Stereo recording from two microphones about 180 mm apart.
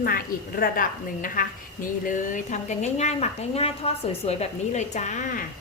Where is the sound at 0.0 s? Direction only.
55° left (ahead or behind).